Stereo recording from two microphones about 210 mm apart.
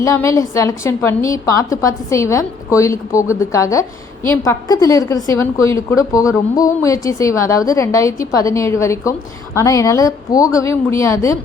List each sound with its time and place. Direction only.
0.0 s a woman's voice: 15° left (ahead or behind)